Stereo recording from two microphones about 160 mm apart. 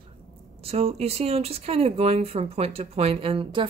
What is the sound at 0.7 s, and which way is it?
Speech, 40° right (ahead or behind).